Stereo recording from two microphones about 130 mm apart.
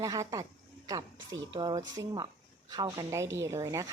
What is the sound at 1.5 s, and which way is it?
A woman's voice, 30° right (ahead or behind).